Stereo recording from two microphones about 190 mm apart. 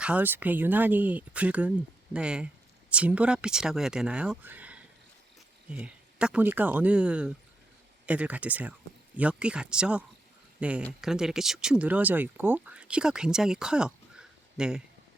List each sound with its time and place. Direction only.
0.0 s speech: 10° right (ahead or behind)